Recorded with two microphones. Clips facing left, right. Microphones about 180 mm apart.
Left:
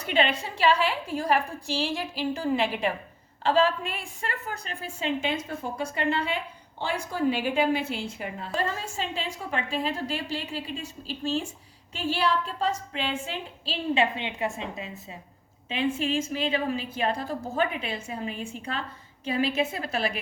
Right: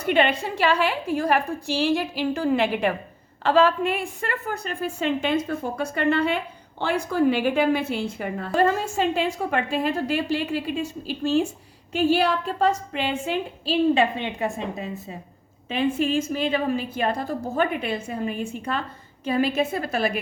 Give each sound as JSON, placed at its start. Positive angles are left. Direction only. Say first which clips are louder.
{"t": 0.0, "sound": "a woman's voice", "louder": "right 5 dB", "side_deg": -55}